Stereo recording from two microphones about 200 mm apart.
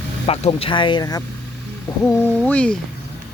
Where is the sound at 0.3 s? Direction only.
30° left (ahead or behind).